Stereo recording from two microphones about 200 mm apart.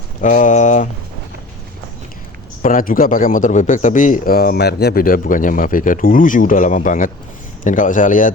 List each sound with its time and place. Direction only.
0.2 s a man's voice: 40° left (ahead or behind)
2.6 s a man's voice: 45° left (ahead or behind)